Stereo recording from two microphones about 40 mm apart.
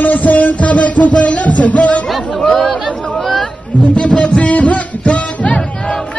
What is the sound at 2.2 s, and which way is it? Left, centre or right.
Speech, left.